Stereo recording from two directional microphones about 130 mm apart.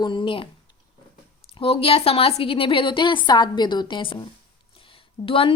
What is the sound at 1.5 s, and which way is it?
A woman's voice, 45° left (ahead or behind).